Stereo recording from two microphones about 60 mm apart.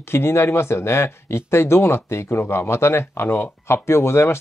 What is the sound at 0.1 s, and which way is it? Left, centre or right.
Speech, left.